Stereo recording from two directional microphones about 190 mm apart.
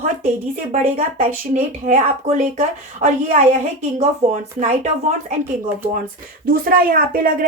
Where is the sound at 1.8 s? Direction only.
40° right (ahead or behind).